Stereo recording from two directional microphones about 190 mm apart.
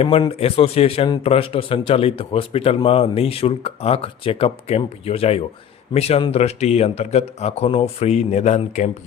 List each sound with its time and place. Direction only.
0.0 s a man's voice: 30° left (ahead or behind)